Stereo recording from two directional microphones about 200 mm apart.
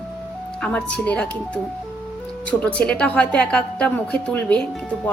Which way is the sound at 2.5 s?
5° left (ahead or behind).